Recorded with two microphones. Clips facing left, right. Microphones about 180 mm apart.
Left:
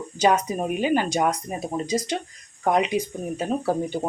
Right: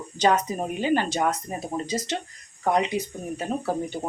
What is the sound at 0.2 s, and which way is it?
Speech, 10° left (ahead or behind).